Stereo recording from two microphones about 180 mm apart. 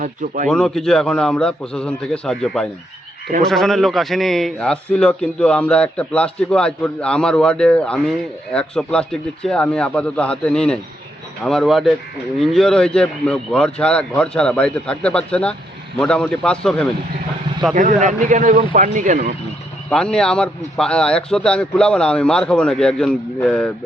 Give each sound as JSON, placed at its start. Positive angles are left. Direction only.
{"t": 0.0, "sound": "a man's voice", "side_deg": -45}
{"t": 0.4, "sound": "a man's voice", "side_deg": 5}
{"t": 17.7, "sound": "a man's voice", "side_deg": -45}
{"t": 19.9, "sound": "a man's voice", "side_deg": 5}